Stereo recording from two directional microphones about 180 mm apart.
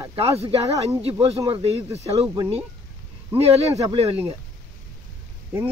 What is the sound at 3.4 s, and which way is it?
Speech, 35° right (ahead or behind).